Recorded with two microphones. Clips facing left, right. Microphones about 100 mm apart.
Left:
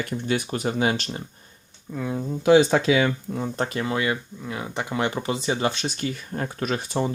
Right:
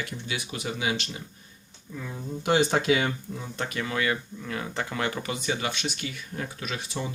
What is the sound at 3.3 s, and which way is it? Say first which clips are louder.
Speech: left 6 dB; 40° left (ahead or behind).